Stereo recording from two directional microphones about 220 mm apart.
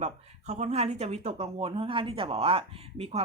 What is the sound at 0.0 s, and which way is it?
Speech, 30° right (ahead or behind).